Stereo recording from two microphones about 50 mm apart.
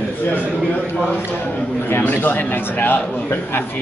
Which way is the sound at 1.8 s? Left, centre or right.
Left.